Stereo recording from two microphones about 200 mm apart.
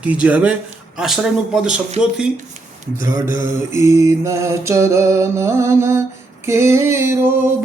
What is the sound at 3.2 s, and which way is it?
Mantra, 40° left (ahead or behind).